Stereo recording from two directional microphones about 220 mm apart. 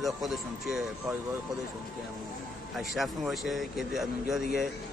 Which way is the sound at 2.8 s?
Centre (ahead or behind).